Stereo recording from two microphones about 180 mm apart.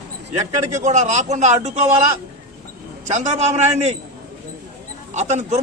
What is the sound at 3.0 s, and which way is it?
Speech, 40° right (ahead or behind).